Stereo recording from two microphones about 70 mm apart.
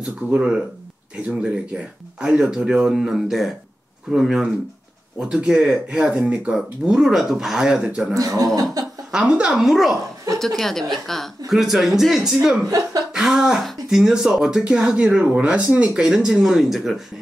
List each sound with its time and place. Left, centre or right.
0.0 s speech: centre
6.5 s speech: centre
8.1 s speech: right
8.8 s chuckle: right
9.1 s speech: centre
10.6 s speech: centre
12.6 s speech: right
13.1 s cough: centre
13.7 s speech: centre